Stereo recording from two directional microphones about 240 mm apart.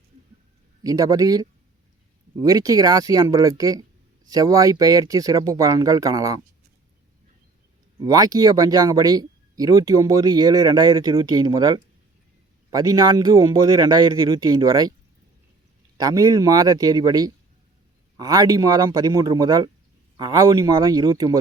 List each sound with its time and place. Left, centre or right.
0.9 s speech: centre
8.0 s speech: centre
16.0 s speech: centre